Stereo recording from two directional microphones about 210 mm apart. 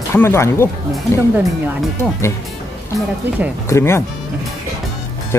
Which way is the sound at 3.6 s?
15° left (ahead or behind).